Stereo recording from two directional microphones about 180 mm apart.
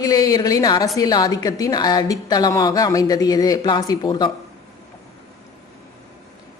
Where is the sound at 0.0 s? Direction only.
20° left (ahead or behind).